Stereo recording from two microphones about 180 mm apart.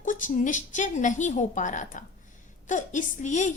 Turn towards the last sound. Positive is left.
turn(degrees=40)  # may be behind; listen again after turning